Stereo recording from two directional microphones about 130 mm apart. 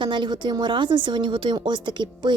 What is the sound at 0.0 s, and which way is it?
A woman's voice, 35° right (ahead or behind).